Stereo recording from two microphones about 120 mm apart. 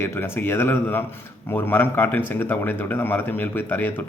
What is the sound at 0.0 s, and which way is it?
Speech, 20° left (ahead or behind).